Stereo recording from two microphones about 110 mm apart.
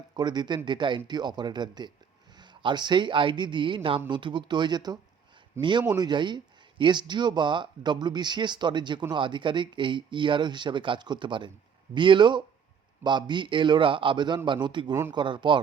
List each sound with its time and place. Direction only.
0.2 s a man's voice: 40° right (ahead or behind)